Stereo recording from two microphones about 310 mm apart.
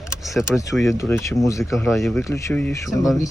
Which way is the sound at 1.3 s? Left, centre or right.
Centre.